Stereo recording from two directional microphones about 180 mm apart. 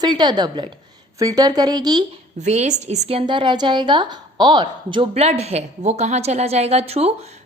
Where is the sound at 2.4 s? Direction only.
40° right (ahead or behind).